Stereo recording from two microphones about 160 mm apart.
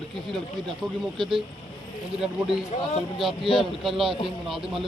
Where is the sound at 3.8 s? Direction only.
Centre (ahead or behind).